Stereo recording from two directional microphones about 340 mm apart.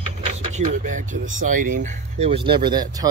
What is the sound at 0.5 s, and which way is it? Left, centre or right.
Speech, right.